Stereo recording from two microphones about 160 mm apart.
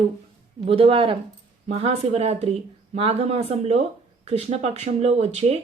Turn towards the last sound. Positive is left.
turn(degrees=-40)  # may be behind; listen again after turning